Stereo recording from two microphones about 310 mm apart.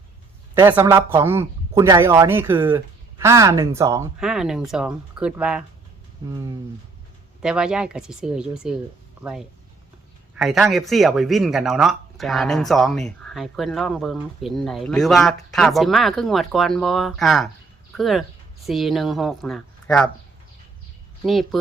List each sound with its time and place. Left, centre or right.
0.5 s speech: centre
6.2 s speech: centre
7.4 s speech: centre
10.3 s speech: centre
21.2 s speech: centre